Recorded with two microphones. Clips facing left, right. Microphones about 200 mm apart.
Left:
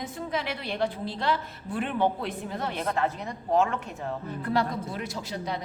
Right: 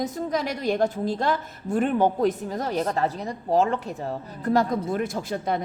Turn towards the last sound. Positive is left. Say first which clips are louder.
# right 6 dB
turn(degrees=-50)  # may be behind; listen again after turning